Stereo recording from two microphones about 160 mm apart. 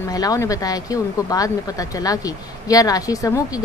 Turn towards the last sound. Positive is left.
turn(degrees=20)  # may be behind; listen again after turning